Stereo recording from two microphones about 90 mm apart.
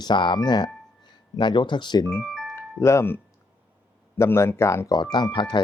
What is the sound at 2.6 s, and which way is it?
Speech, 35° left (ahead or behind).